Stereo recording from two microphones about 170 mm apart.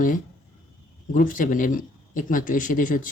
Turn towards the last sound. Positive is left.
turn(degrees=50)  # may be behind; listen again after turning